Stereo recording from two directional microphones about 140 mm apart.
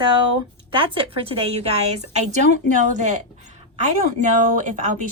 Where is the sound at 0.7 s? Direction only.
40° right (ahead or behind).